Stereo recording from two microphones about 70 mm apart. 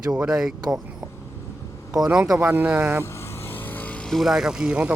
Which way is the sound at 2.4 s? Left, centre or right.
Right.